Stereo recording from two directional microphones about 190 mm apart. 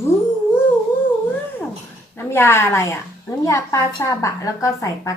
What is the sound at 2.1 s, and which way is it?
A woman's voice, 10° left (ahead or behind).